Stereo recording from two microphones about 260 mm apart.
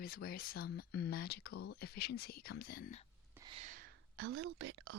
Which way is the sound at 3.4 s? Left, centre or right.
Right.